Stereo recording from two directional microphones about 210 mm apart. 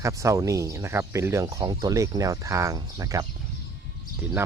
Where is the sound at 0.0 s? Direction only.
15° right (ahead or behind).